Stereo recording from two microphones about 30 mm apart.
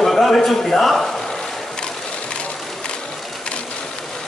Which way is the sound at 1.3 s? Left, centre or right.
Left.